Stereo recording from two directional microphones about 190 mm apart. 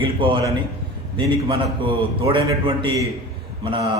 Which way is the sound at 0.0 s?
25° right (ahead or behind).